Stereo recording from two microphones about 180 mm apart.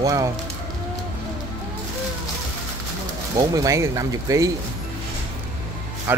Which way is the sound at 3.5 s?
20° right (ahead or behind).